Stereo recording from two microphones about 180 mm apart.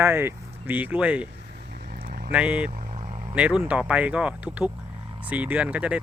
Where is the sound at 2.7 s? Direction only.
40° right (ahead or behind).